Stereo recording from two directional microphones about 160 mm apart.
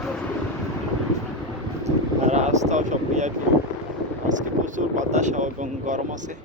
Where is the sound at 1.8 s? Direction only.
45° right (ahead or behind).